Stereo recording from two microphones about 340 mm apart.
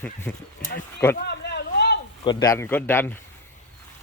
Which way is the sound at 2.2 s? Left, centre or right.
Centre.